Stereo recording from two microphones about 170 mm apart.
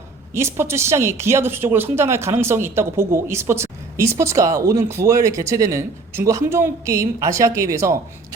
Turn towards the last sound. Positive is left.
turn(degrees=-20)  # may be behind; listen again after turning